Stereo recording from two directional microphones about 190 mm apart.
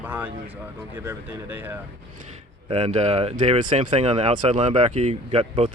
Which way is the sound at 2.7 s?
35° right (ahead or behind).